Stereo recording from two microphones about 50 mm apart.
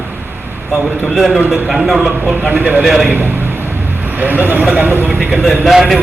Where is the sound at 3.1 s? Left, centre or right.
Right.